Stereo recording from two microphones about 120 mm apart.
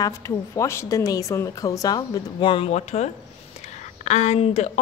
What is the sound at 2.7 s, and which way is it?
Speech, 70° left (ahead or behind).